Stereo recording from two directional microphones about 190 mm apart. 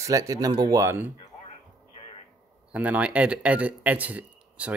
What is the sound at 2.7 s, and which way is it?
Speech, 5° right (ahead or behind).